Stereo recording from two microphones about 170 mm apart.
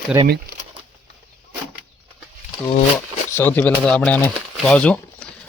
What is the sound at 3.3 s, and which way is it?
Speech, 10° left (ahead or behind).